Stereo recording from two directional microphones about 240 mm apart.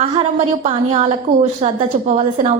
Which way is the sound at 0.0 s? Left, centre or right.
Right.